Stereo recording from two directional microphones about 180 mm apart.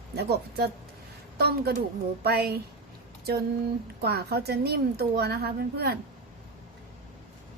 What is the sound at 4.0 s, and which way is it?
A woman's voice, 60° right (ahead or behind).